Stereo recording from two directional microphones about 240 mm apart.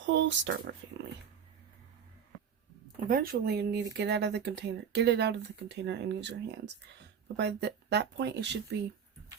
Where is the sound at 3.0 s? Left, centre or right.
Right.